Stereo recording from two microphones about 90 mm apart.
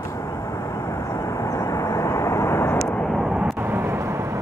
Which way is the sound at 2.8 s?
15° left (ahead or behind).